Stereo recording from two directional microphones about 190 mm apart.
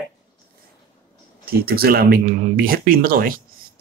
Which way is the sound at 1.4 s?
55° right (ahead or behind).